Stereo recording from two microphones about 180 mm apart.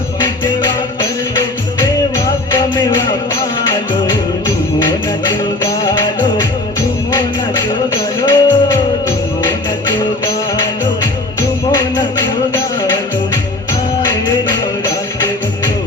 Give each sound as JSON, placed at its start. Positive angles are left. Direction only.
{"t": 0.2, "sound": "music", "side_deg": 25}
{"t": 5.8, "sound": "music", "side_deg": 25}
{"t": 8.2, "sound": "music", "side_deg": 25}
{"t": 14.0, "sound": "music", "side_deg": 25}